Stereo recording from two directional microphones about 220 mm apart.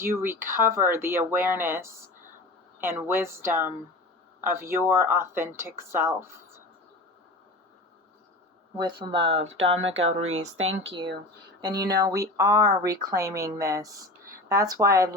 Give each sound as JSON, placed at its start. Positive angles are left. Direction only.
{"t": 0.0, "sound": "speech", "side_deg": -10}
{"t": 8.8, "sound": "speech", "side_deg": -20}
{"t": 9.7, "sound": "speech", "side_deg": -60}
{"t": 11.6, "sound": "speech", "side_deg": -15}